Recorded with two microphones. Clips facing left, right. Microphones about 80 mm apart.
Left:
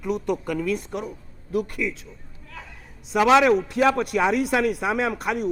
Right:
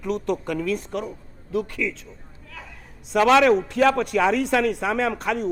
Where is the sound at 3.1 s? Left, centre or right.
Centre.